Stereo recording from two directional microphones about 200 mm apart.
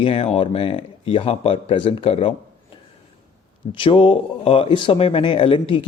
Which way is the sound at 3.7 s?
25° left (ahead or behind).